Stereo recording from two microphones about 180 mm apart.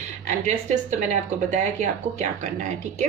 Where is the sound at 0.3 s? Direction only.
45° right (ahead or behind).